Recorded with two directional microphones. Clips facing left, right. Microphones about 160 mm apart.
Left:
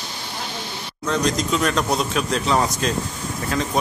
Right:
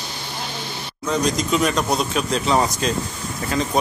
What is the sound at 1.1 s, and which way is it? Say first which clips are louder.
Speech: right 1 dB; 5° right (ahead or behind).